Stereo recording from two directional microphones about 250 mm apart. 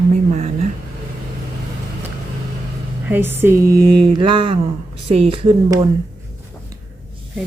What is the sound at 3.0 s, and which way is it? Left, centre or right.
Speech, centre.